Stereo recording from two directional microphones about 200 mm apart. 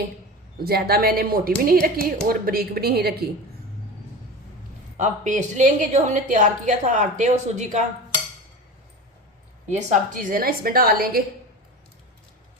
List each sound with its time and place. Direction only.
0.6 s speech: 50° right (ahead or behind)
4.9 s a woman's voice: 35° right (ahead or behind)
9.6 s speech: 35° right (ahead or behind)